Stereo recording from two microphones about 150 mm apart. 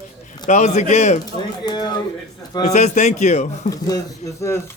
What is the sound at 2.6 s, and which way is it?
A man's voice, 50° left (ahead or behind).